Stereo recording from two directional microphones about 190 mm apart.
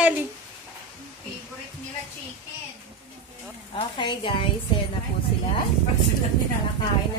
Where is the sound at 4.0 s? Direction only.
25° left (ahead or behind).